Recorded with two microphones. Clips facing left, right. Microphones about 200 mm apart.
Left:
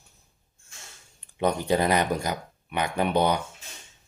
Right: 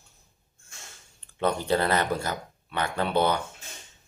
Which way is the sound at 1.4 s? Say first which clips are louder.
Left 1 dB; 15° left (ahead or behind).